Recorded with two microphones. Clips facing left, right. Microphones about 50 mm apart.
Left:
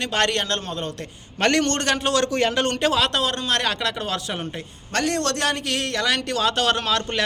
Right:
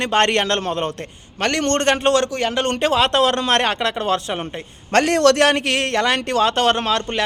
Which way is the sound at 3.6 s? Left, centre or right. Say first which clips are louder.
Right 4 dB; right.